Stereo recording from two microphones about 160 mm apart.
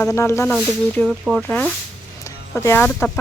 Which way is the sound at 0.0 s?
15° left (ahead or behind).